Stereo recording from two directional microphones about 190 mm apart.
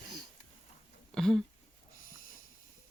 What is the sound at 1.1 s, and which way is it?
Speech, centre (ahead or behind).